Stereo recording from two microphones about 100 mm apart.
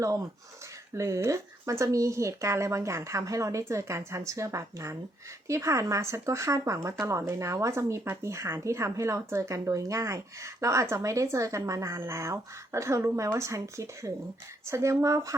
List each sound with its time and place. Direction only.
0.0 s speech: 30° right (ahead or behind)